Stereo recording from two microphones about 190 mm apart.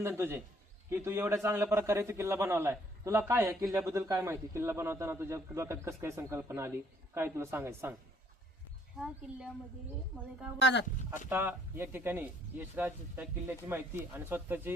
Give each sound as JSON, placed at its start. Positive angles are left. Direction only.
{"t": 0.0, "sound": "a man's voice", "side_deg": -10}
{"t": 9.0, "sound": "a woman's voice", "side_deg": -5}
{"t": 10.6, "sound": "speech", "side_deg": 65}
{"t": 11.3, "sound": "a man's voice", "side_deg": -10}